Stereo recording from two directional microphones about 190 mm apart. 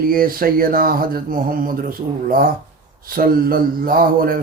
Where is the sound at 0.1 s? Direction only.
50° right (ahead or behind).